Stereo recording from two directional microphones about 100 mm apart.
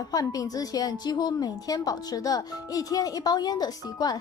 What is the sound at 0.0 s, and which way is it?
Speech, 35° left (ahead or behind).